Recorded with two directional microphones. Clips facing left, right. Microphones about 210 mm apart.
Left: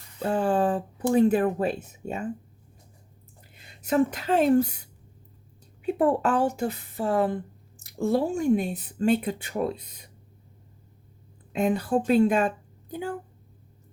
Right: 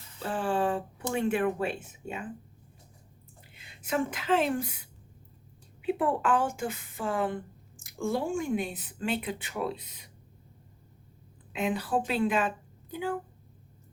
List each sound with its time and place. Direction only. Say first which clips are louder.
0.3 s speech: left 4 dB; 40° left (ahead or behind)
3.5 s speech: left 7 dB; 40° left (ahead or behind)
11.5 s a woman's voice: left 5 dB; 45° left (ahead or behind)